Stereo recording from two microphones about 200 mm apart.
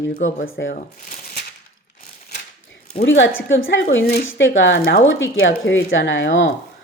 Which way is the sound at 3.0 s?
70° left (ahead or behind).